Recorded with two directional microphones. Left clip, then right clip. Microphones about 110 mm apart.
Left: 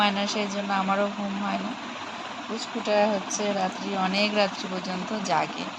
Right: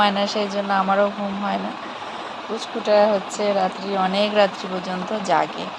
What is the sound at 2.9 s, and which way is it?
Speech, 60° right (ahead or behind).